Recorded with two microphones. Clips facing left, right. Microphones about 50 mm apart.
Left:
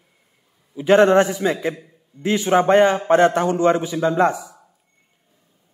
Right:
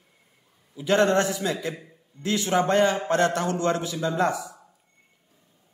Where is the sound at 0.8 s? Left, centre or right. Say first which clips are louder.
Left 7 dB; left.